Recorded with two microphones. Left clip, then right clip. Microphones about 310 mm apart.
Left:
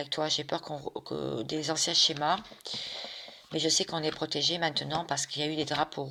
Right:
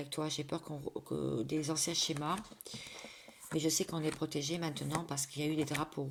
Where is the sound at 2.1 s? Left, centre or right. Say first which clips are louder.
Left 9 dB; left.